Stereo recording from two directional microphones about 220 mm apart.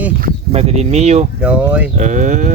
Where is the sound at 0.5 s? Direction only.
30° right (ahead or behind).